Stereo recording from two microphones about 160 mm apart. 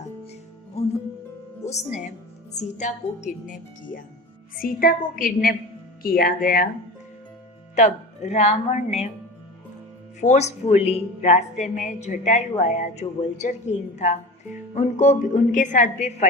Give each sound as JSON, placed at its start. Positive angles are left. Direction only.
{"t": 1.6, "sound": "a woman's voice", "side_deg": 45}
{"t": 7.8, "sound": "a woman's voice", "side_deg": 45}
{"t": 10.2, "sound": "a woman's voice", "side_deg": 45}